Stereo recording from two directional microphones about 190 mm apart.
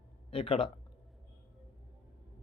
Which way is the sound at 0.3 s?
30° left (ahead or behind).